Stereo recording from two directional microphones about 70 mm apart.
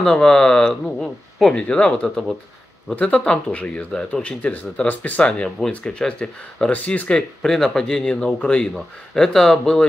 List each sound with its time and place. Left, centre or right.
0.0 s speech: centre